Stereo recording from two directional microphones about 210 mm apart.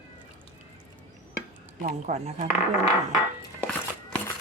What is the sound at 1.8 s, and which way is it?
Speech, 35° right (ahead or behind).